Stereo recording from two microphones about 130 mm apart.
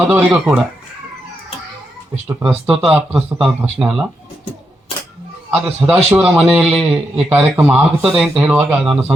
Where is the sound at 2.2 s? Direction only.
15° right (ahead or behind).